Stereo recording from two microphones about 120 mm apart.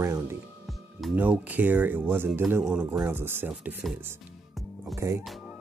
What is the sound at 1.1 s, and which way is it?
Speech, 15° right (ahead or behind).